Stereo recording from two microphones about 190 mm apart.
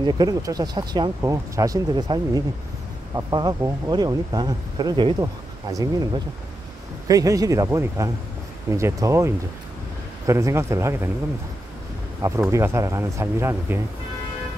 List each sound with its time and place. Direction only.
0.0 s speech: 20° right (ahead or behind)
12.2 s speech: 15° right (ahead or behind)